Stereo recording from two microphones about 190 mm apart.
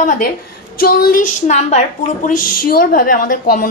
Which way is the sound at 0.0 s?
40° left (ahead or behind).